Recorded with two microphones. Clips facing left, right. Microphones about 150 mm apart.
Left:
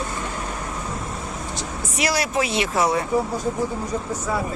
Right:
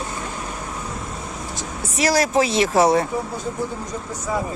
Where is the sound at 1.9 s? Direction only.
40° right (ahead or behind).